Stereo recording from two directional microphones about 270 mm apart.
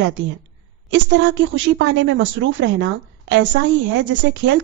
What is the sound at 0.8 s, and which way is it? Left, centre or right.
A woman's voice, right.